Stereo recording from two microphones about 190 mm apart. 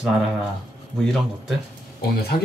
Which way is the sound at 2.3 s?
50° left (ahead or behind).